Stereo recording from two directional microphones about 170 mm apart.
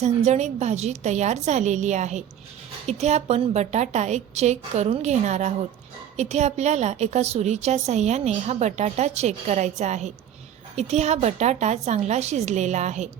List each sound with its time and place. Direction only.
0.0 s a woman's voice: 40° right (ahead or behind)